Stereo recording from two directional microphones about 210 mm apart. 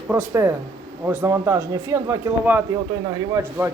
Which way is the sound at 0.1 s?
10° right (ahead or behind).